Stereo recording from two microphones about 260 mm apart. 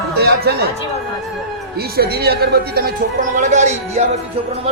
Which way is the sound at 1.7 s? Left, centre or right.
Right.